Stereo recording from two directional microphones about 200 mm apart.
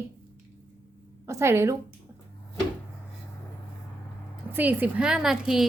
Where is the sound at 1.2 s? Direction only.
15° right (ahead or behind).